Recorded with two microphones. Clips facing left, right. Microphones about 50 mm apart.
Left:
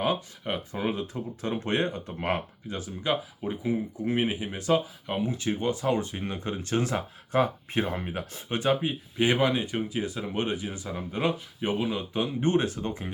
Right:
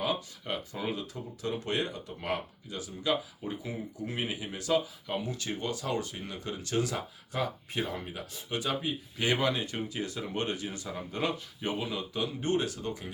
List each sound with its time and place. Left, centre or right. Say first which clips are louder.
0.0 s speech: left 5 dB; left